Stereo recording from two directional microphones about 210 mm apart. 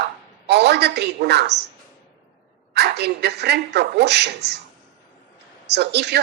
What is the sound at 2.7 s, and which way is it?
A woman's voice, 50° right (ahead or behind).